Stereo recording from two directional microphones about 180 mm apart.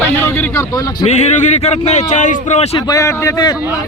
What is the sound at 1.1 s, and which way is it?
A man's voice, 40° left (ahead or behind).